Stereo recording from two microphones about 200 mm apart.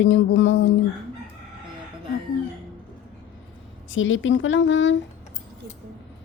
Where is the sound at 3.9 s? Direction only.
75° left (ahead or behind).